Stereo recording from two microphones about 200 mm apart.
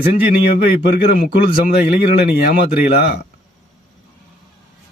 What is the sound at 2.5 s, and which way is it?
Speech, 50° left (ahead or behind).